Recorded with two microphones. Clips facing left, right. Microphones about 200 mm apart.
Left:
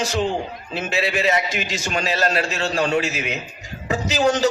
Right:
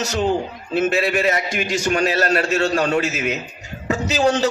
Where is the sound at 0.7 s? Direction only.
50° right (ahead or behind).